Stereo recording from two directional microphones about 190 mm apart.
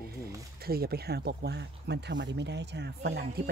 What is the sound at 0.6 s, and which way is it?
Speech, 55° right (ahead or behind).